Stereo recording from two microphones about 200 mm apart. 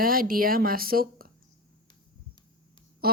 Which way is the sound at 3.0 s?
50° right (ahead or behind).